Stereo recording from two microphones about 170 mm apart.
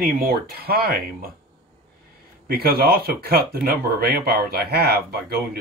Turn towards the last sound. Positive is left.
turn(degrees=-65)  # may be behind; listen again after turning